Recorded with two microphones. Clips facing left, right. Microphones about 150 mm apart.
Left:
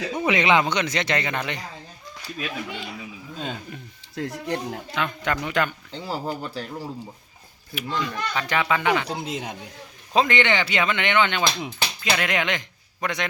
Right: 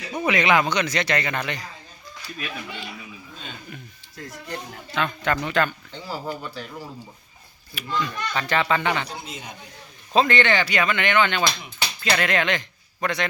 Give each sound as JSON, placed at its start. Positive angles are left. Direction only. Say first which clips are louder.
{"t": 0.2, "sound": "speech", "louder": "even", "side_deg": 25}
{"t": 4.1, "sound": "speech", "louder": "left 7 dB", "side_deg": 75}
{"t": 4.9, "sound": "speech", "louder": "right 3 dB", "side_deg": 15}
{"t": 6.2, "sound": "speech", "louder": "left 2 dB", "side_deg": 30}
{"t": 7.8, "sound": "speech", "louder": "even", "side_deg": 15}
{"t": 9.0, "sound": "speech", "louder": "left 7 dB", "side_deg": 90}
{"t": 10.2, "sound": "speech", "louder": "right 1 dB", "side_deg": 15}